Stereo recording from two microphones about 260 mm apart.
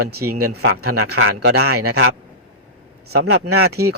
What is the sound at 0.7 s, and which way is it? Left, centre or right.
Speech, right.